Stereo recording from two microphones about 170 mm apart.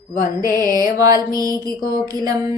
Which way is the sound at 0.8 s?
20° right (ahead or behind).